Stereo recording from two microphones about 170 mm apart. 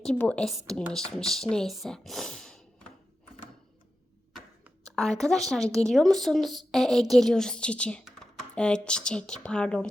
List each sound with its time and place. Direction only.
0.0 s speech: 5° left (ahead or behind)
4.9 s speech: centre (ahead or behind)